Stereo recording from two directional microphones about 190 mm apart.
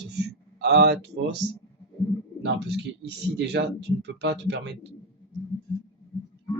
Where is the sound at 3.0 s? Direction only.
65° right (ahead or behind).